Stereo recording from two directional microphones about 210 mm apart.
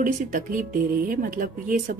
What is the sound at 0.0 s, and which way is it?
Speech, 40° right (ahead or behind).